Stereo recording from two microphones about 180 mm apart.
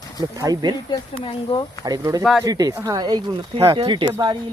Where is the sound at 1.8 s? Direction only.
20° right (ahead or behind).